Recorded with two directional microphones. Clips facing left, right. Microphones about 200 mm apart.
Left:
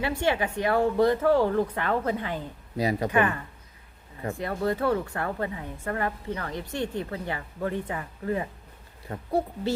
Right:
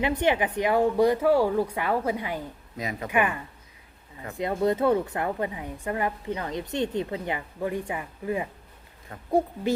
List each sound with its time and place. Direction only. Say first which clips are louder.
0.0 s a woman's voice: right 2 dB; 20° right (ahead or behind)
2.7 s speech: left 7 dB; 35° left (ahead or behind)
3.1 s a woman's voice: right 2 dB; 15° right (ahead or behind)
4.4 s a woman's voice: right 4 dB; 20° right (ahead or behind)
9.1 s speech: left 7 dB; 35° left (ahead or behind)